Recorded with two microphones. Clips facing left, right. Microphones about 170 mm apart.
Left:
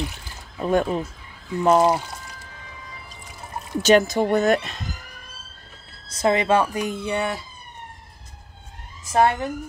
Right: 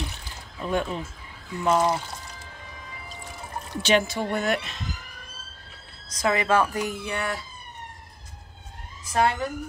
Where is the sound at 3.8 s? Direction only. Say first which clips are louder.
Left 6 dB; 40° left (ahead or behind).